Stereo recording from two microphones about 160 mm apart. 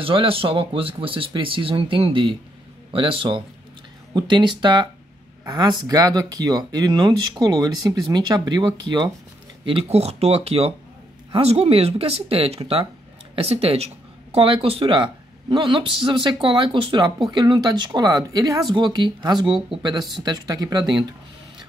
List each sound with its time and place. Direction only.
0.0 s speech: 35° right (ahead or behind)